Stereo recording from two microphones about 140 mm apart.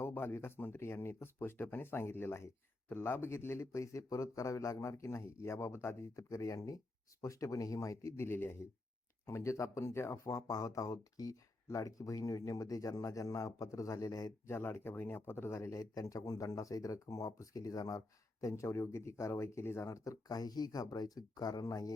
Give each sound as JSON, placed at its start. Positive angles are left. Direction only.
{"t": 0.0, "sound": "speech", "side_deg": 15}